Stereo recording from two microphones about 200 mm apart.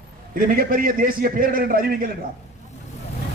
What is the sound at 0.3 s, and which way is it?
A man's voice, 45° right (ahead or behind).